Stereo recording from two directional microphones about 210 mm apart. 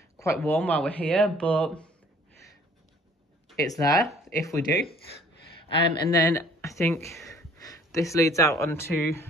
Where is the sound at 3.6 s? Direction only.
15° left (ahead or behind).